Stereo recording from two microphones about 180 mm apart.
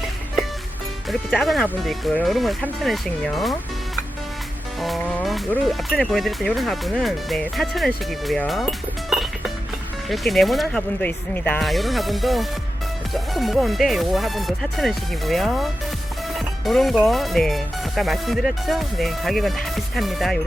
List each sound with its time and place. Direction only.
1.3 s speech: centre (ahead or behind)
4.8 s speech: centre (ahead or behind)
9.0 s music: centre (ahead or behind)
10.1 s speech: centre (ahead or behind)